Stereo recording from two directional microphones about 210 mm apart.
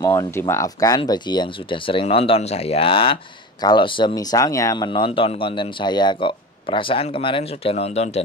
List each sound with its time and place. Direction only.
0.0 s speech: 15° left (ahead or behind); by 8.2 s 30° left (ahead or behind)